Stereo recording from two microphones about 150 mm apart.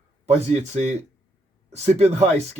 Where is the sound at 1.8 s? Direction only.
50° right (ahead or behind).